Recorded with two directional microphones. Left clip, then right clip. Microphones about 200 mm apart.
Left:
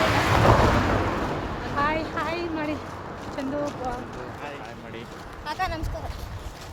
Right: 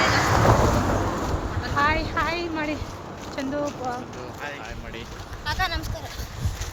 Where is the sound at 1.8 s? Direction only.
20° right (ahead or behind).